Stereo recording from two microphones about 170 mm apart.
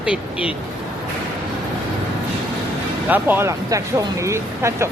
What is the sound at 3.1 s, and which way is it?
Speech, 10° right (ahead or behind).